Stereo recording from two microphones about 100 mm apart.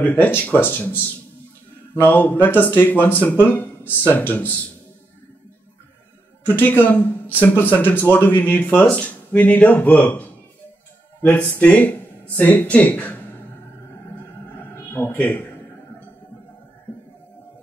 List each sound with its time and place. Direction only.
0.0 s speech: 20° left (ahead or behind)
2.0 s speech: 20° left (ahead or behind)
6.4 s speech: 20° left (ahead or behind)
14.6 s music: 20° left (ahead or behind)